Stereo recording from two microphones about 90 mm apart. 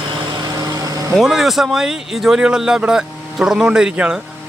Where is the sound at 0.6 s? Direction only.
40° right (ahead or behind).